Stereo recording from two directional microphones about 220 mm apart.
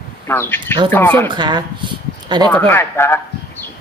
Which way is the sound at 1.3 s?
20° right (ahead or behind).